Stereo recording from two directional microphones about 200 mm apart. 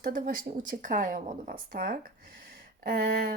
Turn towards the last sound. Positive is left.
turn(degrees=-50)  # may be behind; listen again after turning